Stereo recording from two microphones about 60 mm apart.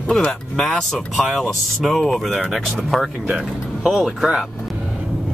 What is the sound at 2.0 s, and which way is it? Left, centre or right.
Speech, centre.